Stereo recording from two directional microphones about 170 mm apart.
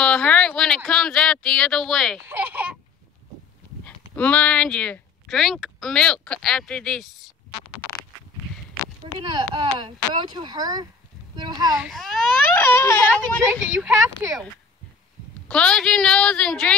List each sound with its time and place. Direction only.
0.0 s a sound: 5° left (ahead or behind)
2.2 s speech: 10° right (ahead or behind)
3.8 s speech: 10° left (ahead or behind)
9.0 s speech: 25° right (ahead or behind)
11.7 s a woman's voice: centre (ahead or behind)
12.5 s speech: 15° left (ahead or behind)
13.7 s speech: 15° right (ahead or behind)
15.4 s a woman's voice: 5° left (ahead or behind)